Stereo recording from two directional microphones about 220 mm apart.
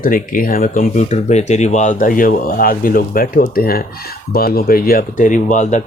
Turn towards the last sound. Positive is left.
turn(degrees=35)  # may be behind; listen again after turning